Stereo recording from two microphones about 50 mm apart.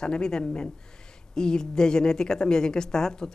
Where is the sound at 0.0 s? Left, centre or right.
Centre.